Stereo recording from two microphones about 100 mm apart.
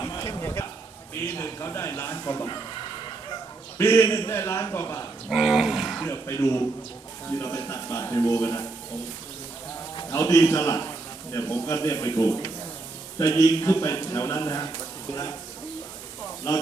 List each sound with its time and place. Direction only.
0.2 s a sound: 30° left (ahead or behind)
1.4 s a man's voice: 30° left (ahead or behind)
3.8 s a man's voice: 25° left (ahead or behind)
5.3 s speech: 5° right (ahead or behind)
6.1 s a man's voice: 30° left (ahead or behind)
10.1 s a man's voice: 35° left (ahead or behind)